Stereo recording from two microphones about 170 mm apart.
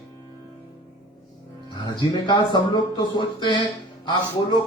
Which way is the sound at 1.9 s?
25° left (ahead or behind).